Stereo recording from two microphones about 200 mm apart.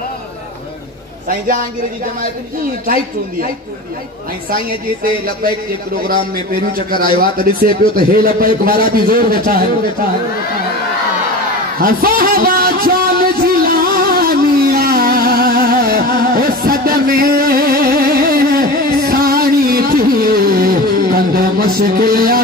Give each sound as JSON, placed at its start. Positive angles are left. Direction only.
{"t": 4.5, "sound": "a man's voice", "side_deg": -45}
{"t": 6.7, "sound": "a man's voice", "side_deg": -45}
{"t": 11.8, "sound": "a sound", "side_deg": -45}